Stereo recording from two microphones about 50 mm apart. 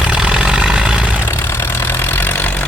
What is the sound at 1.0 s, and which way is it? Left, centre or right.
Vehicle, right.